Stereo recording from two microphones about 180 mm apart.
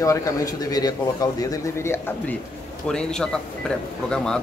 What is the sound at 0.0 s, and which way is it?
Speech, 15° left (ahead or behind).